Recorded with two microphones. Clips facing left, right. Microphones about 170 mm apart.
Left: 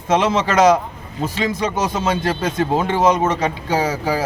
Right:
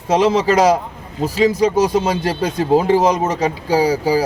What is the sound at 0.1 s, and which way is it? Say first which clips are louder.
A man's voice: right 3 dB; 35° right (ahead or behind).